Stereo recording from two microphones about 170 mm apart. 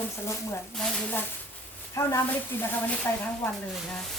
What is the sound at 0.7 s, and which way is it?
Speech, 5° left (ahead or behind).